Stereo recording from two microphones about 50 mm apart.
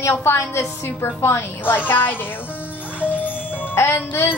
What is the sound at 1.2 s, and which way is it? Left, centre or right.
A woman's voice, left.